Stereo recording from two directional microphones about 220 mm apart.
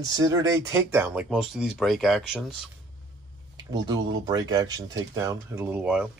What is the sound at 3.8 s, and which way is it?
Speech, 20° right (ahead or behind).